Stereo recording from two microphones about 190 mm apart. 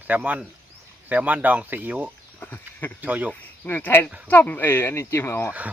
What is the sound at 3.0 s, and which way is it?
Speech, 10° right (ahead or behind).